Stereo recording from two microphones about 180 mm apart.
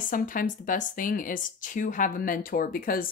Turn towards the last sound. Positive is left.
turn(degrees=50)  # may be behind; listen again after turning